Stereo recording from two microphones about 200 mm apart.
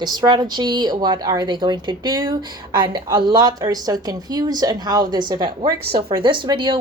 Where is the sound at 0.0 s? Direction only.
20° right (ahead or behind).